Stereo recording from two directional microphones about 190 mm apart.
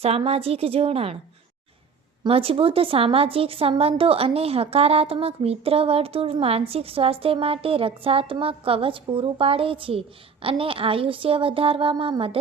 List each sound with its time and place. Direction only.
0.0 s a woman's voice: 30° right (ahead or behind)
2.2 s a woman's voice: 30° right (ahead or behind)